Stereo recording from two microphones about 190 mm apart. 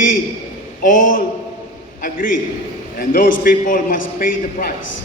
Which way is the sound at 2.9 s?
50° left (ahead or behind).